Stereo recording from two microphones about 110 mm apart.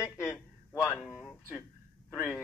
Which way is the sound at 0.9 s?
5° left (ahead or behind).